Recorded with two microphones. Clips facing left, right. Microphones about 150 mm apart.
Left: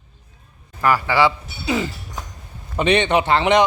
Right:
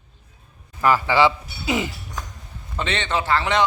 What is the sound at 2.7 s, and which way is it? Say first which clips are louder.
Speech: left 8 dB; 15° left (ahead or behind).